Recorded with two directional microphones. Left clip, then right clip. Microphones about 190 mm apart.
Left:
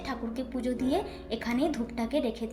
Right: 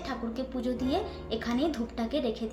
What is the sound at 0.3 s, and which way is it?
A woman's voice, 15° left (ahead or behind).